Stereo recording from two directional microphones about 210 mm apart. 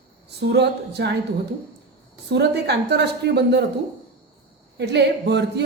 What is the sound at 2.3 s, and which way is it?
Speech, 50° right (ahead or behind).